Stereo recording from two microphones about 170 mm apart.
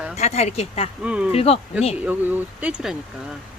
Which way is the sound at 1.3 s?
35° left (ahead or behind).